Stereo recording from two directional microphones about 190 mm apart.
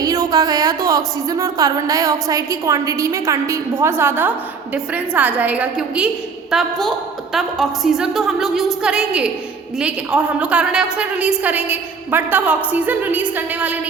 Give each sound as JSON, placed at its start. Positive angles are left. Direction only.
{"t": 0.0, "sound": "a woman's voice", "side_deg": -20}